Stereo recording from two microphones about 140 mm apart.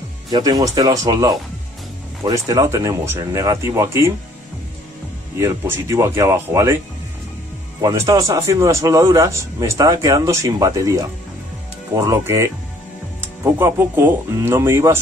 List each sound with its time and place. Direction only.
0.3 s a man's voice: 25° right (ahead or behind)
5.4 s a man's voice: 20° right (ahead or behind)
7.8 s a man's voice: 20° right (ahead or behind)